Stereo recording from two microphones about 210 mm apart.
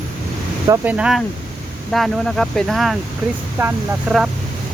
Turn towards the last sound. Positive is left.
turn(degrees=-5)  # may be behind; listen again after turning